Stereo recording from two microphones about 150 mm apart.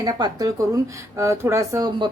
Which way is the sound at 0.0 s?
25° right (ahead or behind).